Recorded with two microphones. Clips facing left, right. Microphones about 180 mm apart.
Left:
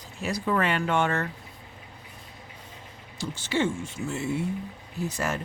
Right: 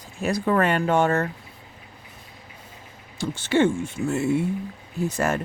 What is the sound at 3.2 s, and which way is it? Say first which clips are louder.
A woman's voice: right 7 dB; 55° right (ahead or behind).